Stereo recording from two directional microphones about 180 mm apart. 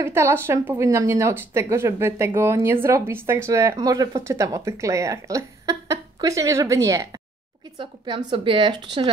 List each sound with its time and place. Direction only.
0.0 s speech: 15° right (ahead or behind)